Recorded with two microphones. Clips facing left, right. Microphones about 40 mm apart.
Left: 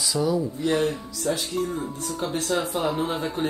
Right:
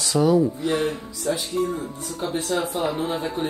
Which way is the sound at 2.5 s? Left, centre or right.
Centre.